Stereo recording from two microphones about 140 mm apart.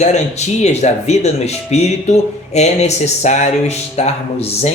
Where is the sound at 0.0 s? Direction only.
55° left (ahead or behind).